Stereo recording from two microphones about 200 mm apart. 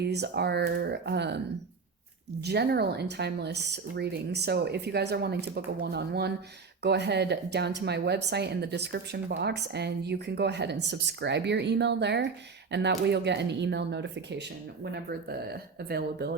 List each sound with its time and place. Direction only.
0.1 s speech: 55° right (ahead or behind)
2.4 s speech: 55° right (ahead or behind)